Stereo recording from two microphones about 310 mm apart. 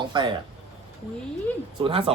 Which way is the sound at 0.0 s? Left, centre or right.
Centre.